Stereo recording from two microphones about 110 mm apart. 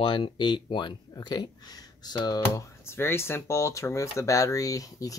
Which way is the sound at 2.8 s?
20° left (ahead or behind).